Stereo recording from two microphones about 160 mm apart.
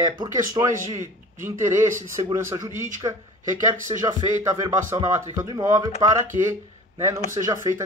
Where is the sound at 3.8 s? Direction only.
20° right (ahead or behind).